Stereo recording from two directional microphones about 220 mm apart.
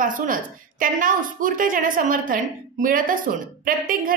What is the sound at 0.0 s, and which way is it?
A woman's voice, 40° right (ahead or behind).